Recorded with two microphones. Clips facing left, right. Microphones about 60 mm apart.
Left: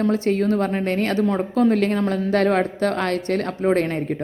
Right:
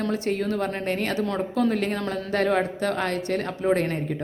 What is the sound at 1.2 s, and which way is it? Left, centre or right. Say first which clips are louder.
Speech: left 5 dB; left.